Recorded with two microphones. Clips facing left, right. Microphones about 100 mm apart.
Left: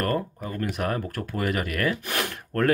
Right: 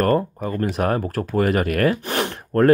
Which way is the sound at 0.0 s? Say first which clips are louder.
Right 8 dB; 40° right (ahead or behind).